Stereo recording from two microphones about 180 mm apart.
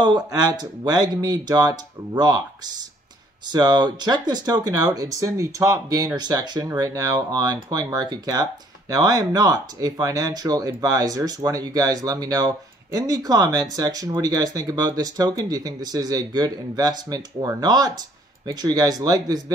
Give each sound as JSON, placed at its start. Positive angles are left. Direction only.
{"t": 0.0, "sound": "speech", "side_deg": -20}